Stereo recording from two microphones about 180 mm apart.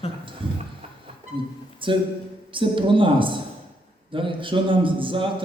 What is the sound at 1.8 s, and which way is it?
A man's voice, 30° right (ahead or behind).